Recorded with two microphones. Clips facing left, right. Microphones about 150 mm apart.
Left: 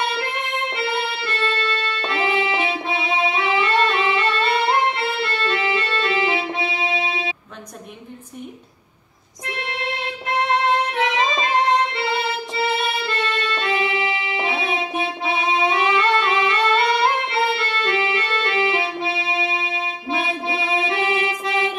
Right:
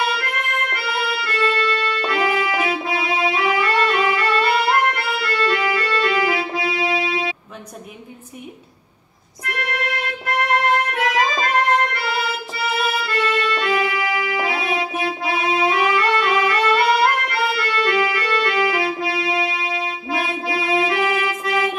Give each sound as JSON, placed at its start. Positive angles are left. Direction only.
{"t": 0.1, "sound": "music", "side_deg": 25}
{"t": 9.4, "sound": "music", "side_deg": 25}